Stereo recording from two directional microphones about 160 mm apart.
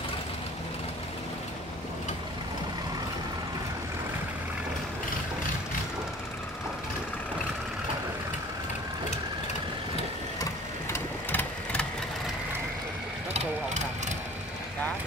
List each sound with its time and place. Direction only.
10.4 s sewing machine: 15° left (ahead or behind)
13.3 s vehicle: 40° right (ahead or behind)